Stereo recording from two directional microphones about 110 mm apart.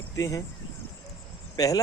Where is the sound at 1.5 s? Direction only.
35° left (ahead or behind).